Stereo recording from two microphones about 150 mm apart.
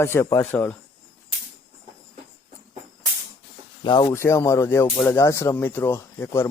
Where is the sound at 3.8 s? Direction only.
30° left (ahead or behind).